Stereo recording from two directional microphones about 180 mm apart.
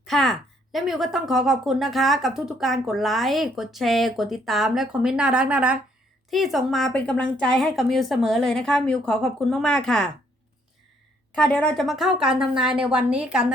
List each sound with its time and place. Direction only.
0.0 s a woman's voice: centre (ahead or behind)
11.3 s a woman's voice: 5° left (ahead or behind)